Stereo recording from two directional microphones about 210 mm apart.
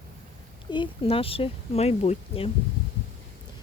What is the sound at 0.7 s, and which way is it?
Speech, 25° left (ahead or behind).